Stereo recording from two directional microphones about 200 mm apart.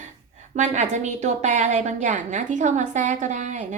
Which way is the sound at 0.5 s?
35° right (ahead or behind).